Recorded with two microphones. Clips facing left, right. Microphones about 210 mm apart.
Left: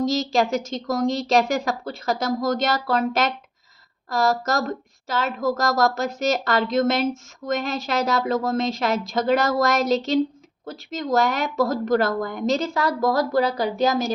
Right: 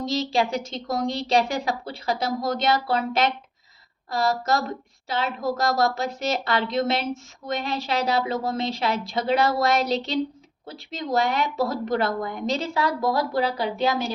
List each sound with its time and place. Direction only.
0.0 s a woman's voice: 45° left (ahead or behind)